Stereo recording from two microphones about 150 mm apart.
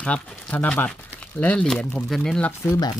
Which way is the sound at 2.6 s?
20° left (ahead or behind).